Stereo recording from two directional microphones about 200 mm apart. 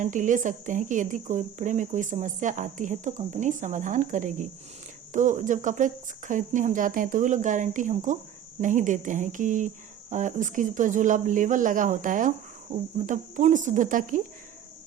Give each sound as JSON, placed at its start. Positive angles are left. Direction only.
{"t": 0.0, "sound": "speech", "side_deg": -40}